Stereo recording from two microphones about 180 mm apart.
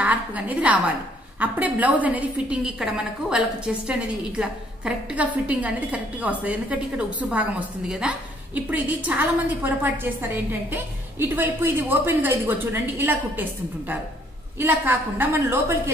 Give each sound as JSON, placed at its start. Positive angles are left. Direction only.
{"t": 0.0, "sound": "a woman's voice", "side_deg": -10}